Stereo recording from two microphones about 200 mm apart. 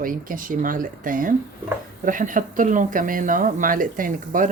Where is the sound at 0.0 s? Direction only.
45° right (ahead or behind).